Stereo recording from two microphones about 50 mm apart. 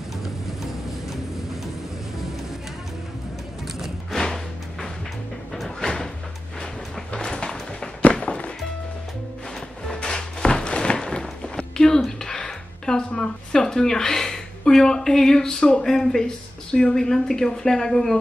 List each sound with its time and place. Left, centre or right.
1.0 s vehicle: centre
4.1 s music: centre
5.8 s door: centre
6.6 s music: centre
9.8 s music: centre
15.8 s speech: centre